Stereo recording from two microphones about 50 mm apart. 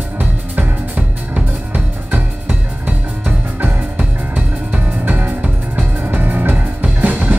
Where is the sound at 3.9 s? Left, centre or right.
Right.